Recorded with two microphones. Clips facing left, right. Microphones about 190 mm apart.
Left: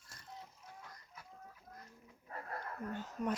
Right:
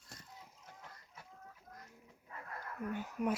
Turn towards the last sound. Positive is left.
turn(degrees=-10)  # may be behind; listen again after turning